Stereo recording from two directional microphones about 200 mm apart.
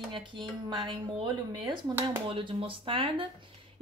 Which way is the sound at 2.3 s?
25° right (ahead or behind).